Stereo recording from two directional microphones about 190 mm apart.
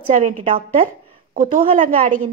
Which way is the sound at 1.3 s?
45° right (ahead or behind).